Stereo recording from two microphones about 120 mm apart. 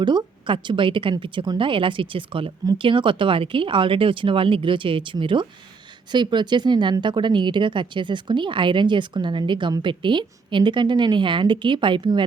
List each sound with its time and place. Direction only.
0.0 s speech: 40° right (ahead or behind)